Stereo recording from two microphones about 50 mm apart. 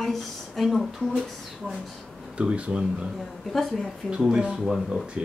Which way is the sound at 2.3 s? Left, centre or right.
Right.